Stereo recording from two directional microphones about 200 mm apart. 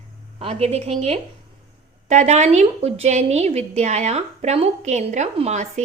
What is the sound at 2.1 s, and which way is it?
Speech, 35° right (ahead or behind).